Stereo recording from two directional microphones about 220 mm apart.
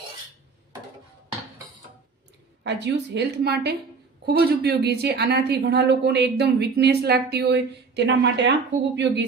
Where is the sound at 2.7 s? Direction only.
50° right (ahead or behind).